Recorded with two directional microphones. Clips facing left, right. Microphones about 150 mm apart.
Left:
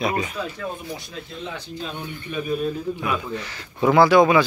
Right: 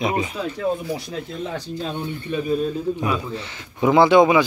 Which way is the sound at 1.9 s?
30° right (ahead or behind).